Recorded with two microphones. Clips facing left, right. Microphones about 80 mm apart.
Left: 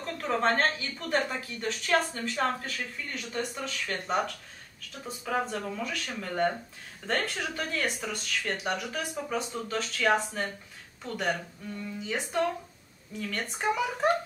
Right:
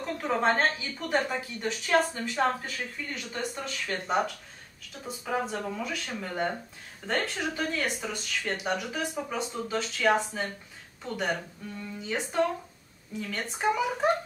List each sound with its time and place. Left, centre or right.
0.0 s a woman's voice: centre
13.2 s a woman's voice: centre